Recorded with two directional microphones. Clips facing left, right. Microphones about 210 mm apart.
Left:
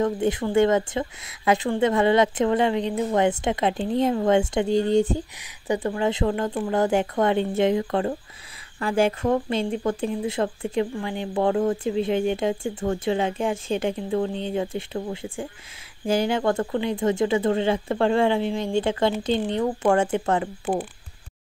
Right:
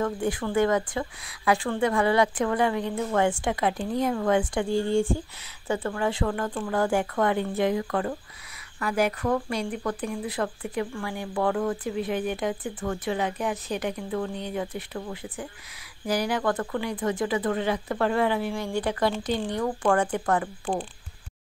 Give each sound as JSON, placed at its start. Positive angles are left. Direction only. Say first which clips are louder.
{"t": 0.0, "sound": "speech", "louder": "left 4 dB", "side_deg": 25}